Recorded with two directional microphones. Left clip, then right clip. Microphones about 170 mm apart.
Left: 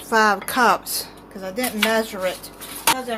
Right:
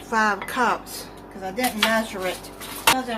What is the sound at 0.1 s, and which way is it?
A woman's voice, 55° left (ahead or behind).